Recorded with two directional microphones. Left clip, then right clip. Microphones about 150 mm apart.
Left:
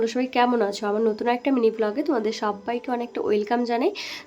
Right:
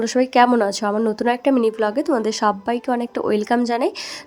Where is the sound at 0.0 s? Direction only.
40° right (ahead or behind).